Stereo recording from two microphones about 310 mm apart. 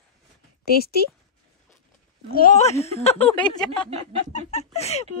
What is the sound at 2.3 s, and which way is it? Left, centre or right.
Speech, left.